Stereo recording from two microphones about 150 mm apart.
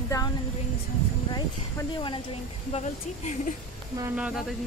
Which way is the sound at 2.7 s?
50° left (ahead or behind).